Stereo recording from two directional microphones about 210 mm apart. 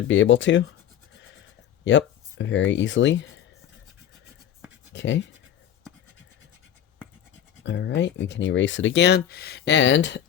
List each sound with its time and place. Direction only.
0.1 s speech: 60° left (ahead or behind)
1.8 s speech: 60° left (ahead or behind)
4.9 s speech: 55° left (ahead or behind)
7.6 s speech: 60° left (ahead or behind)